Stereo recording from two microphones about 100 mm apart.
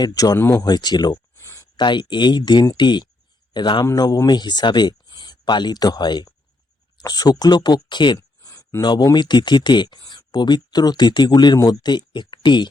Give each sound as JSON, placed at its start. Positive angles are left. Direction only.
{"t": 0.0, "sound": "speech", "side_deg": 40}
{"t": 0.3, "sound": "speech", "side_deg": 20}
{"t": 0.6, "sound": "speech", "side_deg": 45}
{"t": 1.4, "sound": "a sound", "side_deg": 25}
{"t": 1.7, "sound": "speech", "side_deg": 50}
{"t": 8.4, "sound": "a sound", "side_deg": 30}
{"t": 8.8, "sound": "speech", "side_deg": 45}